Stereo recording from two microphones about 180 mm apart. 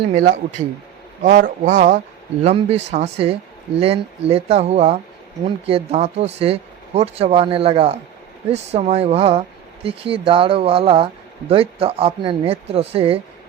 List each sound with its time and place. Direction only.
1.2 s speech: 45° right (ahead or behind)